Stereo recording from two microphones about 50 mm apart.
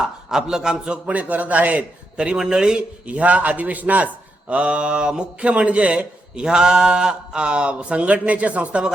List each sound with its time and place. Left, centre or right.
0.0 s a man's voice: centre; by 1.8 s right
2.1 s a man's voice: right
6.4 s a man's voice: centre